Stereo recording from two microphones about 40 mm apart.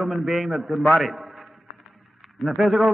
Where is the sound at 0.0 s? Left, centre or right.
Centre.